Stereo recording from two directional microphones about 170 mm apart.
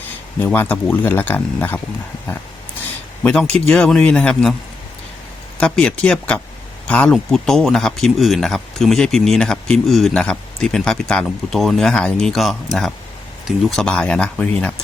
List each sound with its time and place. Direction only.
0.3 s speech: 10° left (ahead or behind)
3.2 s speech: 5° left (ahead or behind)
5.5 s speech: 5° left (ahead or behind)
13.7 s speech: 5° left (ahead or behind)